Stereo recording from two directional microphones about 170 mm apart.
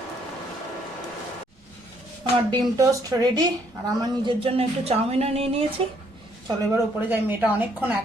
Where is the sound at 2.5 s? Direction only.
25° right (ahead or behind).